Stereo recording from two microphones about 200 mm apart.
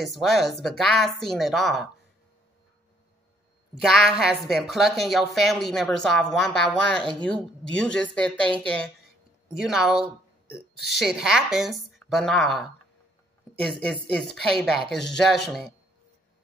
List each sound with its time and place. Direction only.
0.0 s a woman's voice: centre (ahead or behind)
3.8 s a woman's voice: centre (ahead or behind)
7.0 s speech: 25° right (ahead or behind)
7.7 s a woman's voice: 5° left (ahead or behind)